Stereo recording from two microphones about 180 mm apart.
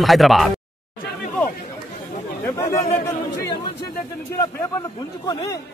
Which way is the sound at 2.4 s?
15° left (ahead or behind).